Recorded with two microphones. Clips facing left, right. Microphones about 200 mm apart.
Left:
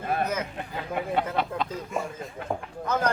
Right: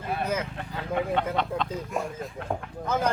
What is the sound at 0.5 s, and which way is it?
Speech, 10° left (ahead or behind).